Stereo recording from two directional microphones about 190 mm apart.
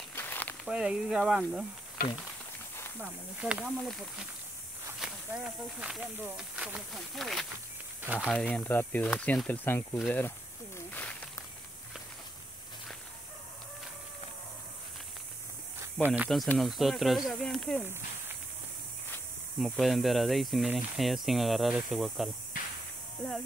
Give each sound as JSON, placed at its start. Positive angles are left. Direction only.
{"t": 0.1, "sound": "a sound", "side_deg": 10}
{"t": 0.7, "sound": "speech", "side_deg": -5}
{"t": 3.0, "sound": "speech", "side_deg": -10}
{"t": 5.0, "sound": "speech", "side_deg": -5}
{"t": 8.3, "sound": "speech", "side_deg": 5}
{"t": 10.9, "sound": "a sound", "side_deg": 10}
{"t": 16.1, "sound": "speech", "side_deg": 0}
{"t": 19.6, "sound": "speech", "side_deg": 0}
{"t": 22.5, "sound": "a sound", "side_deg": 45}